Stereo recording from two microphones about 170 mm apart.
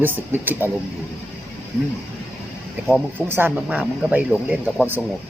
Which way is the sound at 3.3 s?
10° right (ahead or behind).